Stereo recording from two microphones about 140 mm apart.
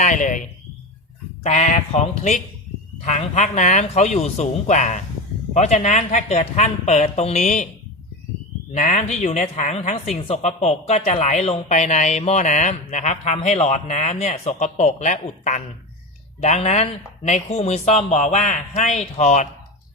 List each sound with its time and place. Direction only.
0.0 s speech: 60° left (ahead or behind)
1.5 s speech: 55° left (ahead or behind)
8.7 s speech: 60° left (ahead or behind)